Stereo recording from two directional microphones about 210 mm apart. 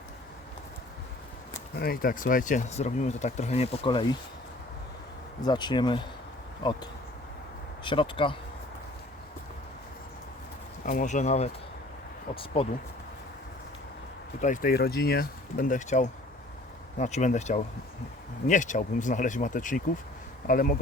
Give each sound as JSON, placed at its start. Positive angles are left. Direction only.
{"t": 1.8, "sound": "speech", "side_deg": 45}
{"t": 5.4, "sound": "speech", "side_deg": 20}
{"t": 7.9, "sound": "speech", "side_deg": 25}
{"t": 10.8, "sound": "speech", "side_deg": 35}
{"t": 14.4, "sound": "speech", "side_deg": 40}